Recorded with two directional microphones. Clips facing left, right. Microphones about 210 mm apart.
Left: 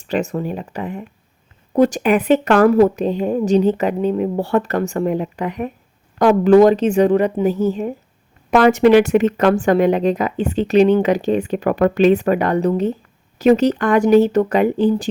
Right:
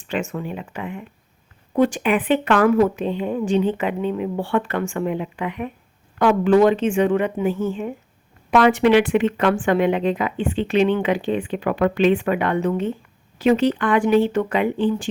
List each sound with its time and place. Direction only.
0.0 s speech: 40° left (ahead or behind)